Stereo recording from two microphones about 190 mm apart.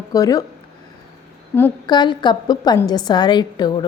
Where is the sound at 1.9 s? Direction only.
25° left (ahead or behind).